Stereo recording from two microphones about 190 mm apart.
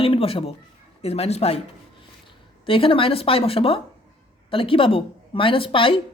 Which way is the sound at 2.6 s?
30° left (ahead or behind).